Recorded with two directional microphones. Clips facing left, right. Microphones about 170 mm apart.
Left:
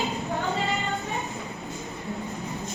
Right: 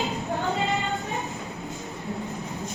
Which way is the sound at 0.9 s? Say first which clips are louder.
Even; centre (ahead or behind).